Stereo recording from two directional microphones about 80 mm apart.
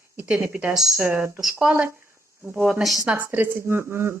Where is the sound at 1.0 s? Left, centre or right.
Right.